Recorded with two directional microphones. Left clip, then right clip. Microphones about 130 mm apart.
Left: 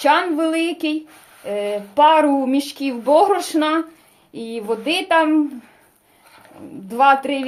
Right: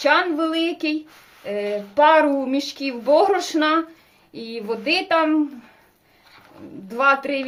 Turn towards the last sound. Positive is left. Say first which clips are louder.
# left 4 dB
turn(degrees=30)  # may be behind; listen again after turning